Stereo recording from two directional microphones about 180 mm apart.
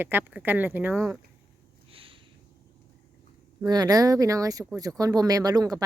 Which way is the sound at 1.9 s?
30° right (ahead or behind).